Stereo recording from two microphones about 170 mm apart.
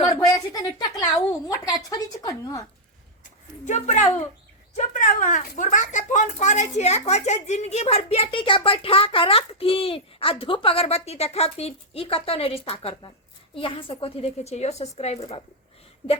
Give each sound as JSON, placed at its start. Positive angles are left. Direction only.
{"t": 0.3, "sound": "a woman's voice", "side_deg": 20}
{"t": 3.7, "sound": "a woman's voice", "side_deg": 40}